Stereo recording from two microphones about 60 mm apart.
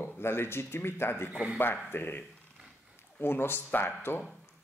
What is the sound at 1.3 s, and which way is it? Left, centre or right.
Speech, centre.